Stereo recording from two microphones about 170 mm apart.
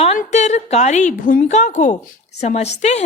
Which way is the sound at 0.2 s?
45° left (ahead or behind).